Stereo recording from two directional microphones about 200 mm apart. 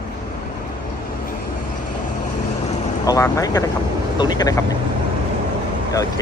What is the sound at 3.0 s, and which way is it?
Speech, 15° left (ahead or behind).